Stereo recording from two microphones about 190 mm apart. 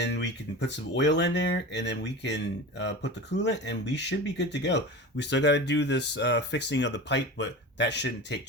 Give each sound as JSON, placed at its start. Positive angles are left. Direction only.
{"t": 0.0, "sound": "speech", "side_deg": 65}